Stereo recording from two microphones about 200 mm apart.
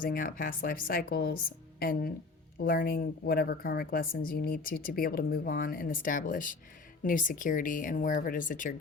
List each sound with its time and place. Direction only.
0.0 s a woman's voice: 45° left (ahead or behind)